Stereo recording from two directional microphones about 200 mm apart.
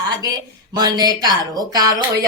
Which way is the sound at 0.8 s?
20° right (ahead or behind).